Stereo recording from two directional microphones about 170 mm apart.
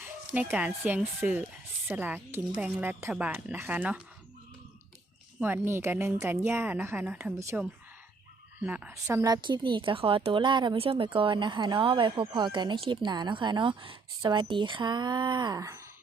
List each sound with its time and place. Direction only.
0.0 s speech: 10° right (ahead or behind)
5.4 s speech: 15° right (ahead or behind)
8.6 s a woman's voice: 10° right (ahead or behind)